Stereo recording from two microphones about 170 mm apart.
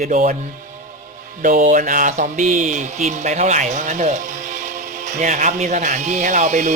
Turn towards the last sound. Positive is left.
turn(degrees=-45)  # may be behind; listen again after turning